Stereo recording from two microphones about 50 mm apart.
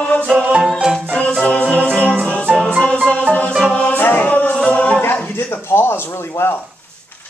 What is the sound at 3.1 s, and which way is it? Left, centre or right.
Music, left.